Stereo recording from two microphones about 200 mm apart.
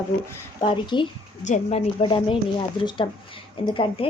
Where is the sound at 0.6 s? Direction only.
25° left (ahead or behind).